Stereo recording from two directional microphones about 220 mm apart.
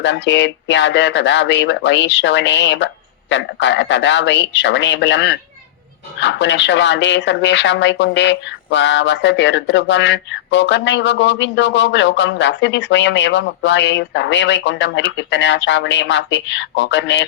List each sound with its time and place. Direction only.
0.0 s speech: 55° left (ahead or behind)